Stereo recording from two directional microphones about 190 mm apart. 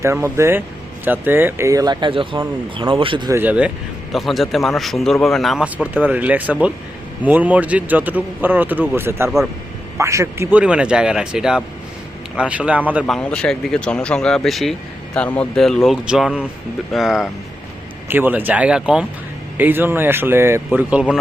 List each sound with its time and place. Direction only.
0.0 s a man's voice: 15° right (ahead or behind)
3.3 s a man's voice: 10° right (ahead or behind)
13.1 s a man's voice: 5° left (ahead or behind)